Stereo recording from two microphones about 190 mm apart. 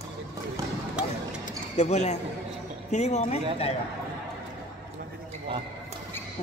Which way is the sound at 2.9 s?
35° left (ahead or behind).